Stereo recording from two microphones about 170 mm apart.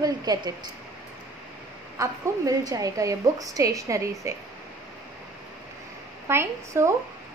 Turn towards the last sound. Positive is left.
turn(degrees=-15)  # may be behind; listen again after turning